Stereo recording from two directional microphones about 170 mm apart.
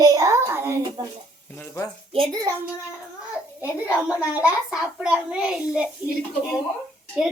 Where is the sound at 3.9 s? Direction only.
5° right (ahead or behind).